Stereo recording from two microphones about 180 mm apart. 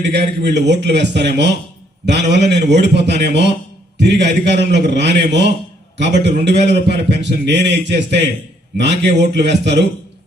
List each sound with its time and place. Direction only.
0.0 s a man's voice: 70° right (ahead or behind)